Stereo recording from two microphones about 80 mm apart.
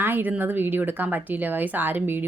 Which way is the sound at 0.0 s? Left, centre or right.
Right.